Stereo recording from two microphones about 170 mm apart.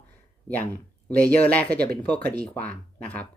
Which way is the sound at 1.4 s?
10° left (ahead or behind).